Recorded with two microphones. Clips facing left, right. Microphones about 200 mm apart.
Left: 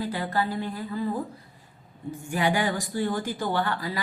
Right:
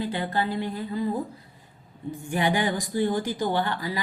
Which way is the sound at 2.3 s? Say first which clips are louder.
Right 1 dB; 20° right (ahead or behind).